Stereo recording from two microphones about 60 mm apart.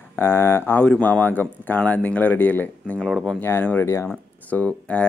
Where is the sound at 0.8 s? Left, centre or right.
Left.